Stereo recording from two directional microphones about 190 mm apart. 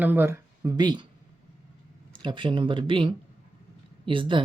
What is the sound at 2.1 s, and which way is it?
Speech, 25° right (ahead or behind).